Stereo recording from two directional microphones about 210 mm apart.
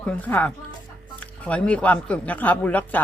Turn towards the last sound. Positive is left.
turn(degrees=10)  # may be behind; listen again after turning